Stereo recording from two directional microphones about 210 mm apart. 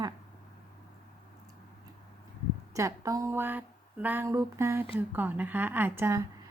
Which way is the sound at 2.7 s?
15° right (ahead or behind).